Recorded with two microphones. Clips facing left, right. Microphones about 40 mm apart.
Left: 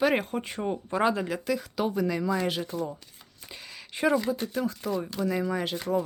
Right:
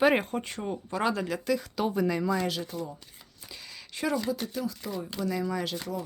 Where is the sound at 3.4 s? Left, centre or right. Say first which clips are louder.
Left 2 dB; centre.